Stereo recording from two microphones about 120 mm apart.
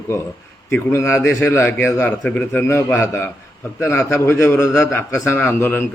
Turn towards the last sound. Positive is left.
turn(degrees=20)  # may be behind; listen again after turning